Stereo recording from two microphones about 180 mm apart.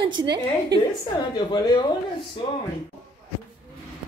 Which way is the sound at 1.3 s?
25° left (ahead or behind).